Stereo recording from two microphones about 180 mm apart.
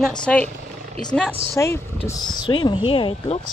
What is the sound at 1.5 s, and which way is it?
Speech, 15° left (ahead or behind).